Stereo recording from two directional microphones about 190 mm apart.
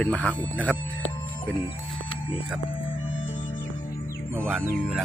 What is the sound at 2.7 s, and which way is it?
Music, 25° left (ahead or behind).